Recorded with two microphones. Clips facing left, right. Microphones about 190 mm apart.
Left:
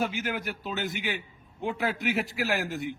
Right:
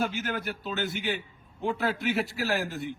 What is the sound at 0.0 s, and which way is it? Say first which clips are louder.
Speech: even; centre (ahead or behind).